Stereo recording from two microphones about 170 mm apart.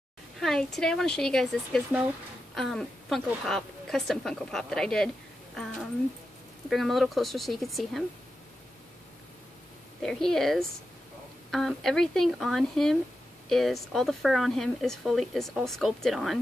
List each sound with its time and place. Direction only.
0.4 s speech: centre (ahead or behind)
6.7 s speech: centre (ahead or behind)
10.0 s speech: centre (ahead or behind)